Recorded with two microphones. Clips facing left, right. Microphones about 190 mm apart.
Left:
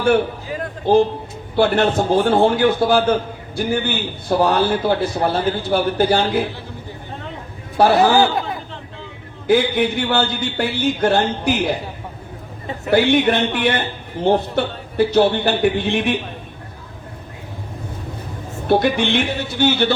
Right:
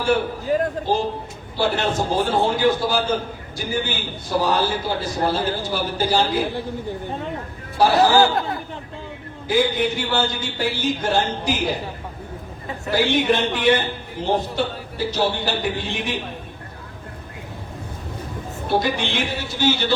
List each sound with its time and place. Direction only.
0.4 s a sound: 40° right (ahead or behind)
1.5 s a man's voice: 60° left (ahead or behind)
7.8 s a man's voice: 60° left (ahead or behind)
8.1 s speech: 20° left (ahead or behind)
9.5 s a man's voice: 60° left (ahead or behind)
12.9 s a man's voice: 60° left (ahead or behind)
18.7 s a man's voice: 60° left (ahead or behind)